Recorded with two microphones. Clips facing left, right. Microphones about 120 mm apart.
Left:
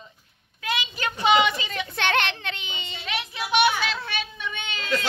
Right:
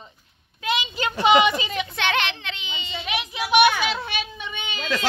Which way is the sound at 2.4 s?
50° left (ahead or behind).